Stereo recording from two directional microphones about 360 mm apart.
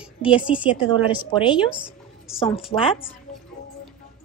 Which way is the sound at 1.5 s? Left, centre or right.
Centre.